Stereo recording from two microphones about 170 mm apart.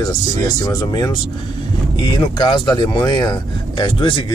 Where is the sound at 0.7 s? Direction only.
20° left (ahead or behind).